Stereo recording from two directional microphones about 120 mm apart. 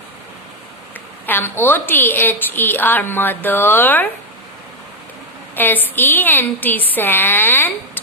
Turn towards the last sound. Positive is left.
turn(degrees=15)  # may be behind; listen again after turning